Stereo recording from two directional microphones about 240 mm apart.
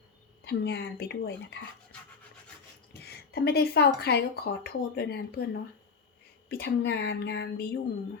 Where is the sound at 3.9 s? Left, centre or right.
Left.